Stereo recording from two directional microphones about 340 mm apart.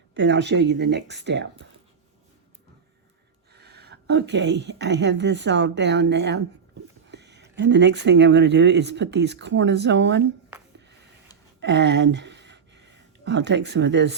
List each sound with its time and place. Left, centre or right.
0.1 s speech: right
3.5 s a woman's voice: right
11.6 s speech: right